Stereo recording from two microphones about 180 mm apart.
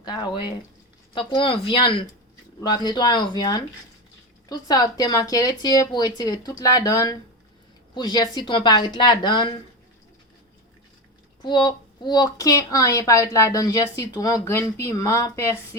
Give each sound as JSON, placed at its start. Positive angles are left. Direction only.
{"t": 0.0, "sound": "speech", "side_deg": 25}
{"t": 11.4, "sound": "speech", "side_deg": 25}